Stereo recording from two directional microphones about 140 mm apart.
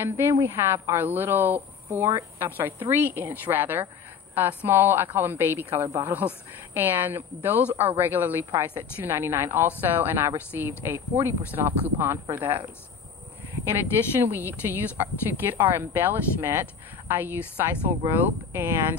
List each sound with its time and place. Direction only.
0.0 s a woman's voice: 20° right (ahead or behind)
14.2 s a woman's voice: 15° right (ahead or behind)